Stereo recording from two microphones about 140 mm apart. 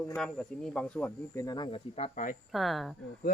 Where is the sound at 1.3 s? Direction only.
20° left (ahead or behind).